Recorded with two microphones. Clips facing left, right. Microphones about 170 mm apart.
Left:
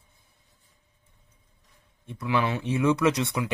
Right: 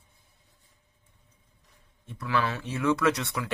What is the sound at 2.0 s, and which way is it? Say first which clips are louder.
Speech: left 2 dB; 20° left (ahead or behind).